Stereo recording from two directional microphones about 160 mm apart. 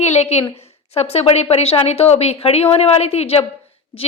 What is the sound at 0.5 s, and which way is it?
A woman's voice, 40° left (ahead or behind).